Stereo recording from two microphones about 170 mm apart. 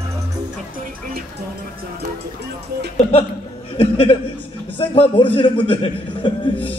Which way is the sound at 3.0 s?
35° left (ahead or behind).